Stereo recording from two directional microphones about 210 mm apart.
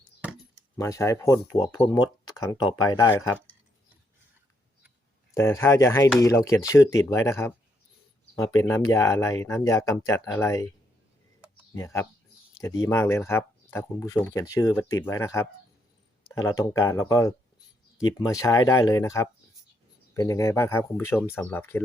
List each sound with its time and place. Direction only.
0.8 s speech: 15° left (ahead or behind)
5.3 s speech: 15° left (ahead or behind)
8.6 s speech: 15° left (ahead or behind)
11.7 s speech: 15° left (ahead or behind)